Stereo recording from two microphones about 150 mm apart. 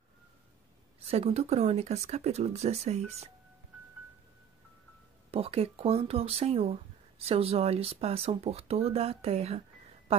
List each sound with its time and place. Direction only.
0.9 s speech: 40° right (ahead or behind)
5.3 s speech: 40° right (ahead or behind)